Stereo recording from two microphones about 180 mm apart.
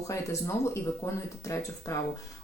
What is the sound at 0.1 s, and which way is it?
Speech, 15° left (ahead or behind).